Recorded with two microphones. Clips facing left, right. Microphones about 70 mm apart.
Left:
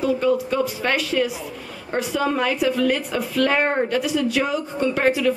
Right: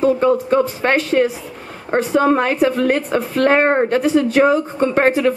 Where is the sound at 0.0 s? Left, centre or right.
Right.